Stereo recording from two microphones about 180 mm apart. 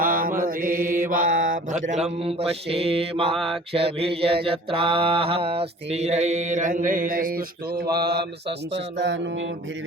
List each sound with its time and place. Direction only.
0.0 s mantra: 50° right (ahead or behind)
2.0 s mantra: 35° right (ahead or behind)
3.3 s mantra: centre (ahead or behind)
3.9 s mantra: 30° right (ahead or behind); by 8.2 s 60° right (ahead or behind)
8.7 s a sound: 80° right